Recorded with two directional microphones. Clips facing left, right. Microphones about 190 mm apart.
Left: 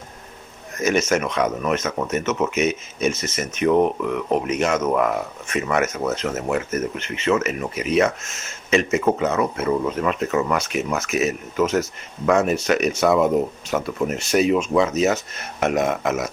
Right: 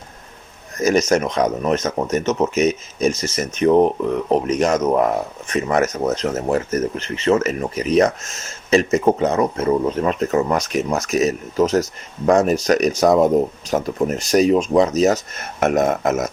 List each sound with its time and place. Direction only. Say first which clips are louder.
0.8 s speech: right 4 dB; 35° right (ahead or behind)